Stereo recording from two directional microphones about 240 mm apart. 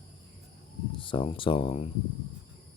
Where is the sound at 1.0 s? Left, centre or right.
Left.